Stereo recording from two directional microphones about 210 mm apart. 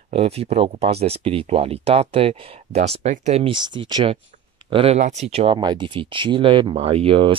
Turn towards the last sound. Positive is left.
turn(degrees=-25)  # may be behind; listen again after turning